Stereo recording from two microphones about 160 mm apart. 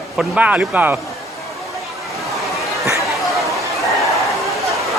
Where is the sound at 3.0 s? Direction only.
Centre (ahead or behind).